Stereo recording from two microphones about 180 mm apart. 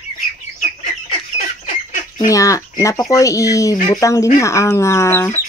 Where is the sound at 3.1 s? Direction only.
20° left (ahead or behind).